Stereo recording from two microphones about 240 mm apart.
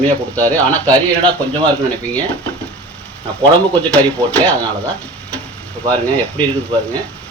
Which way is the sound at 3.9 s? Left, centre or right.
Centre.